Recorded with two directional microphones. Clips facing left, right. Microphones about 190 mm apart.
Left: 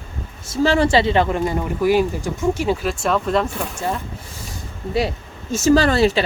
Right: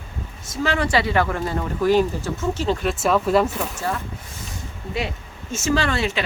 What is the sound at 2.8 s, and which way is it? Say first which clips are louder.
Speech: right 1 dB; centre (ahead or behind).